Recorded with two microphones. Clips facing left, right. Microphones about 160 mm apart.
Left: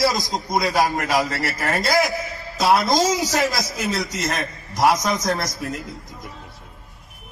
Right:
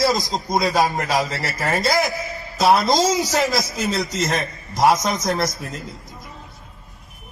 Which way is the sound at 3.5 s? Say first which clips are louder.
Right 2 dB; 20° right (ahead or behind).